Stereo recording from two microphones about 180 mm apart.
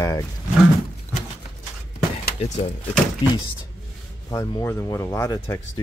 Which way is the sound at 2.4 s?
40° left (ahead or behind).